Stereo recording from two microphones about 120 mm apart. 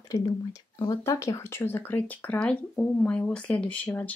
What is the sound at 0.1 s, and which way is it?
Speech, 30° left (ahead or behind).